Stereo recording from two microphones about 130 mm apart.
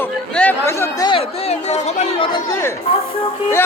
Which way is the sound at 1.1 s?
50° left (ahead or behind).